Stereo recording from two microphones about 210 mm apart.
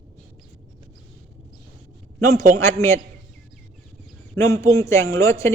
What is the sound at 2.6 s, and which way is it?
Speech, 15° left (ahead or behind).